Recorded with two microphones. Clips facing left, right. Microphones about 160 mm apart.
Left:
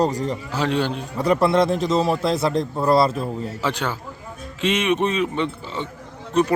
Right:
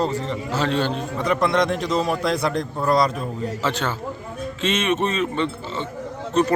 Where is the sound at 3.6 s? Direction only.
10° left (ahead or behind).